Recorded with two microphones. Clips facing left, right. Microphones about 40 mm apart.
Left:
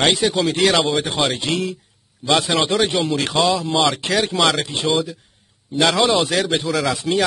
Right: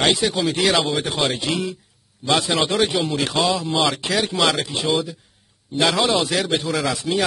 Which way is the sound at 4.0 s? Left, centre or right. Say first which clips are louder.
Left 2 dB; left.